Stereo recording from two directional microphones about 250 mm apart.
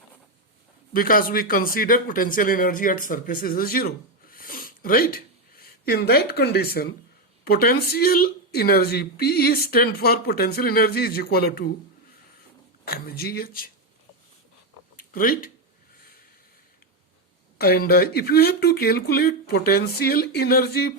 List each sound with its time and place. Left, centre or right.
0.9 s a woman's voice: left
12.8 s a woman's voice: left
14.9 s a sound: left
17.6 s a woman's voice: left